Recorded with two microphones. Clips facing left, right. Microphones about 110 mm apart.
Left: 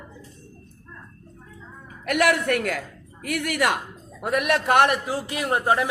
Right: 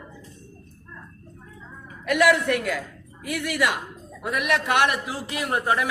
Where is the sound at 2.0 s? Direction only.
55° left (ahead or behind).